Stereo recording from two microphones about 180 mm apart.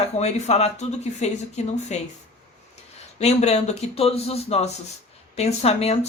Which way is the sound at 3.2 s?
35° left (ahead or behind).